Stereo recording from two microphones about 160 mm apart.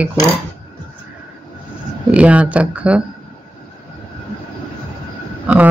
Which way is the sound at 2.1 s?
10° right (ahead or behind).